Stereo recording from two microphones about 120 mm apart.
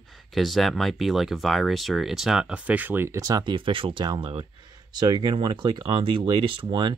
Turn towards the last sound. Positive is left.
turn(degrees=-40)  # may be behind; listen again after turning